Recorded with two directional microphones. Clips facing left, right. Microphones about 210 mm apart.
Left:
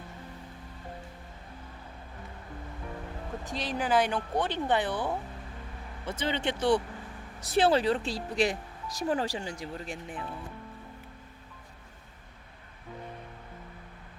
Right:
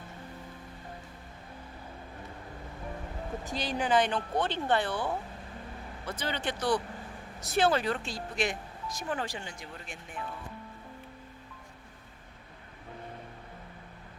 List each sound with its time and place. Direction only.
3.4 s speech: centre (ahead or behind); by 5.0 s 20° left (ahead or behind)
6.1 s speech: 25° left (ahead or behind)